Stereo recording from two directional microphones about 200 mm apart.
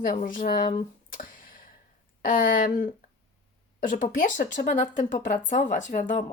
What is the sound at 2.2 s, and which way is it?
A woman's voice, 45° left (ahead or behind).